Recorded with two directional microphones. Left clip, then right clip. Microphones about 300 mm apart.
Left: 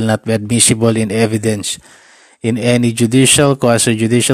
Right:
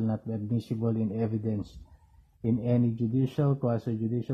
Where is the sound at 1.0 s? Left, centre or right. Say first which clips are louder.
Left 17 dB; left.